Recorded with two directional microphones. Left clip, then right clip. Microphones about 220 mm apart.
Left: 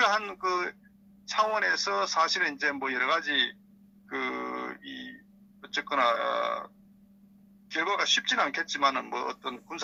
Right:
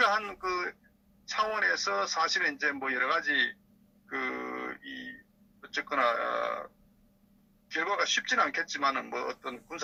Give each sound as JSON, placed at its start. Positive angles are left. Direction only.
{"t": 0.0, "sound": "telephone", "side_deg": 25}
{"t": 1.3, "sound": "a man's voice", "side_deg": 25}
{"t": 4.1, "sound": "a sound", "side_deg": 25}
{"t": 5.6, "sound": "a man's voice", "side_deg": 25}
{"t": 7.7, "sound": "a man's voice", "side_deg": 25}